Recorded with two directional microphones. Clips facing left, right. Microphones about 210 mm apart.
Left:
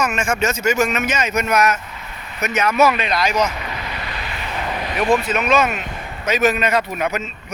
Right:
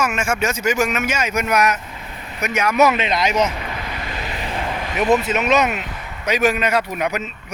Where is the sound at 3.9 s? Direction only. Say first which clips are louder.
Right 1 dB; 40° right (ahead or behind); by 5.8 s 20° right (ahead or behind).